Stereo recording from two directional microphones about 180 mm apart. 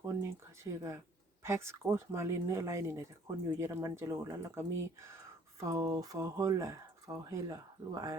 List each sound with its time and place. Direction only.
0.0 s speech: 15° right (ahead or behind)